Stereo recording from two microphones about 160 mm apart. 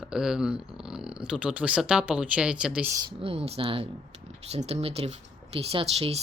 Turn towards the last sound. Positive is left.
turn(degrees=-35)  # may be behind; listen again after turning